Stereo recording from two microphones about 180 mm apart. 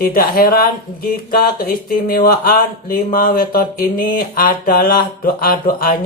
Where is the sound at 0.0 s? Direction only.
55° left (ahead or behind).